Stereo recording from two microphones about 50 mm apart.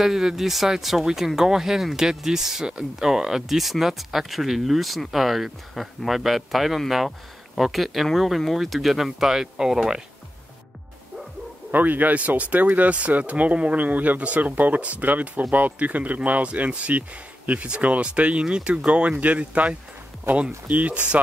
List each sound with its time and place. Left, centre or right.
0.0 s speech: centre
11.7 s speech: right